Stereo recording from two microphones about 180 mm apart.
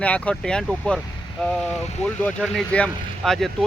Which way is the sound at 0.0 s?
5° left (ahead or behind).